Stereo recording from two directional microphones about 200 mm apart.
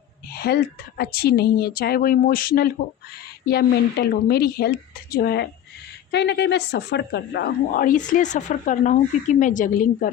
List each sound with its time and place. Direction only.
0.3 s a woman's voice: 50° left (ahead or behind)